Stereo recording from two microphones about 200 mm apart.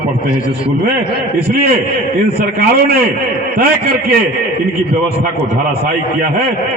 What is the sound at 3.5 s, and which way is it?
Speech, 45° right (ahead or behind).